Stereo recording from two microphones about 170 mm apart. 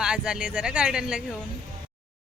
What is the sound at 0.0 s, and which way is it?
Speech, 5° right (ahead or behind).